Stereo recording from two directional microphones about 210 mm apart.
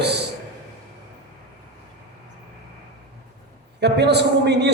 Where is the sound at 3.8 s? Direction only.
50° right (ahead or behind).